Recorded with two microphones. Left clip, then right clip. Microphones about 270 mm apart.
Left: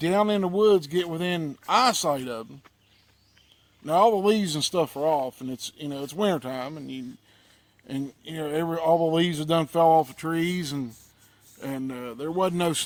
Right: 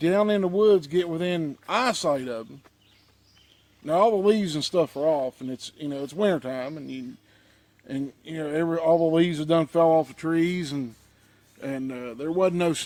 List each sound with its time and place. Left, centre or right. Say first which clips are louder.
0.0 s speech: right 1 dB; left
3.8 s speech: even; left